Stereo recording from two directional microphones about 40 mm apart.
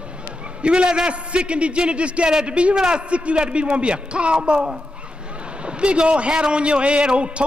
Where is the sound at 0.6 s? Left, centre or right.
Right.